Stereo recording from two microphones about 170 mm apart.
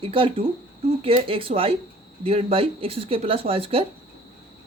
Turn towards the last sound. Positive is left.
turn(degrees=-35)  # may be behind; listen again after turning